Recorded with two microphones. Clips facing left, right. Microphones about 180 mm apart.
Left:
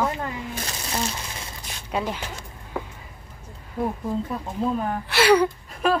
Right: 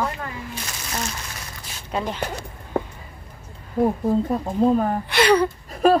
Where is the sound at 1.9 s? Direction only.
5° left (ahead or behind).